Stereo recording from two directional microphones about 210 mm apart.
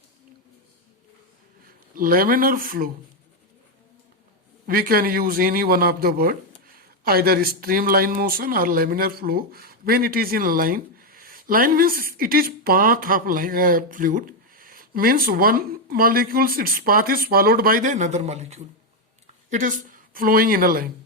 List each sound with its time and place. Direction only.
1.6 s speech: 45° right (ahead or behind)
4.6 s a woman's voice: 45° right (ahead or behind)